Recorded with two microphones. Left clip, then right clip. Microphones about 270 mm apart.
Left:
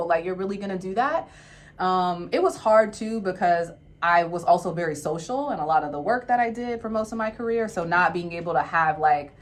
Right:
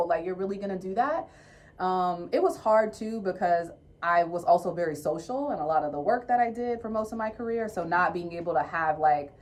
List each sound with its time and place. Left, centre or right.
0.1 s speech: centre